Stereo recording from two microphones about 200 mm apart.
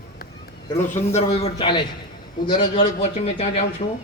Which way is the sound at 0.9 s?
35° left (ahead or behind).